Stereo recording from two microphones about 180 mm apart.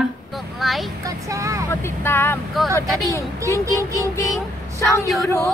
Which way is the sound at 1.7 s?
15° left (ahead or behind).